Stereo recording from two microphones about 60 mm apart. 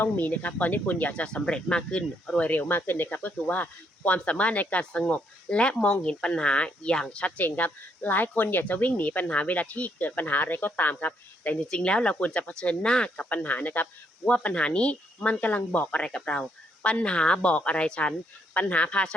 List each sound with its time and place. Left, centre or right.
0.0 s speech: left
2.4 s speech: left
11.7 s speech: centre
13.3 s speech: left
16.0 s speech: centre